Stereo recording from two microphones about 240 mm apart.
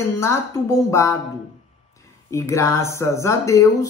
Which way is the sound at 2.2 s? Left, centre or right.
Centre.